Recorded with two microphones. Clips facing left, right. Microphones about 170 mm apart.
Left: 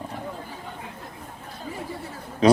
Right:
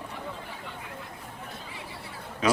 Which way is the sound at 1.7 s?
45° left (ahead or behind).